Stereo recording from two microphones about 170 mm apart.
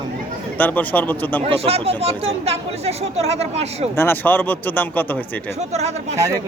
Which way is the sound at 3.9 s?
15° left (ahead or behind).